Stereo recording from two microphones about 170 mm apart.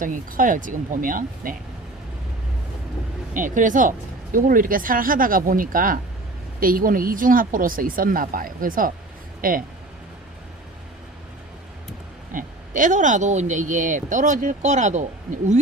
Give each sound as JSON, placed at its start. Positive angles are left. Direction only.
{"t": 0.0, "sound": "speech", "side_deg": -50}
{"t": 3.3, "sound": "speech", "side_deg": -50}
{"t": 12.3, "sound": "speech", "side_deg": -50}